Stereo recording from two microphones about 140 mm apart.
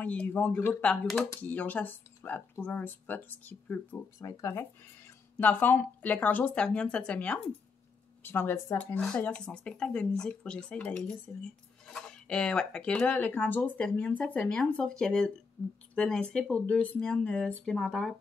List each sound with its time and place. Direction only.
0.0 s speech: 10° left (ahead or behind)
3.9 s speech: 20° left (ahead or behind); by 18.1 s 5° left (ahead or behind)